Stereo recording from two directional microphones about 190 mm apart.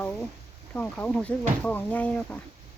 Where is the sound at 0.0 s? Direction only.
10° left (ahead or behind).